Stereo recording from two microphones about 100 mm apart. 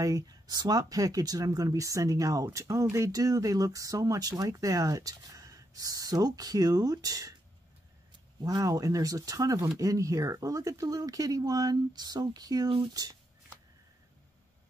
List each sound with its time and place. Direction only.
0.0 s speech: 40° right (ahead or behind)
8.4 s speech: 40° right (ahead or behind)